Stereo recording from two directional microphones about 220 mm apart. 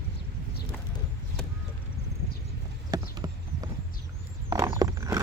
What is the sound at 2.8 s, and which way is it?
Horse, 15° right (ahead or behind).